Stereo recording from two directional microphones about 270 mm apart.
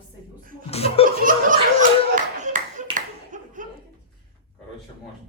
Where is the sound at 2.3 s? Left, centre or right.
Right.